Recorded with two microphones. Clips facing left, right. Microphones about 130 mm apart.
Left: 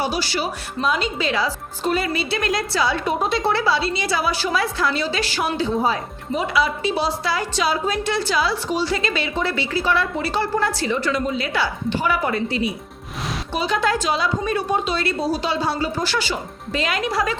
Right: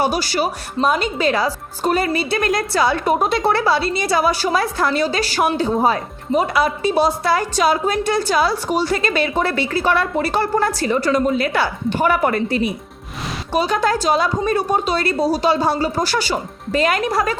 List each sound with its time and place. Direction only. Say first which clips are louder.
0.0 s a woman's voice: right 4 dB; 45° right (ahead or behind)